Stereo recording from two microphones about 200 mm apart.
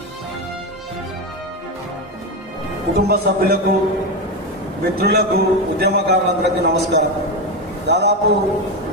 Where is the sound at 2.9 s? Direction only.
50° right (ahead or behind).